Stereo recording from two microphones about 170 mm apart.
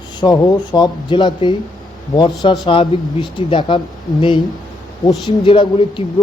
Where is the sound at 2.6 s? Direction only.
30° left (ahead or behind).